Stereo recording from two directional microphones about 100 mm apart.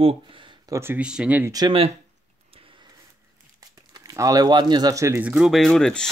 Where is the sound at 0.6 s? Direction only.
30° right (ahead or behind).